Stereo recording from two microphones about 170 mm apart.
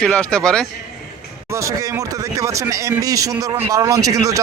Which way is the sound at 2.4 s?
20° right (ahead or behind).